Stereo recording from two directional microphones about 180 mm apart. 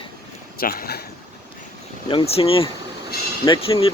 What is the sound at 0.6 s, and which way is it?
Speech, 55° left (ahead or behind).